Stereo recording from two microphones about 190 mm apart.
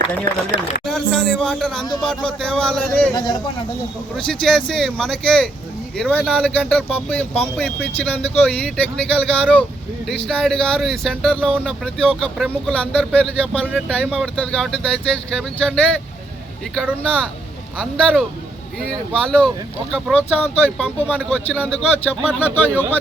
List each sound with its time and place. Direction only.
0.9 s speech: centre (ahead or behind)
3.2 s speech: 20° left (ahead or behind)
4.3 s speech: 5° left (ahead or behind)
10.1 s speech: 5° left (ahead or behind)